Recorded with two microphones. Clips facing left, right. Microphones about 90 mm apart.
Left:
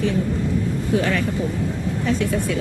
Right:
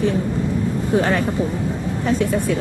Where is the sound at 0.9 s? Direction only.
35° right (ahead or behind).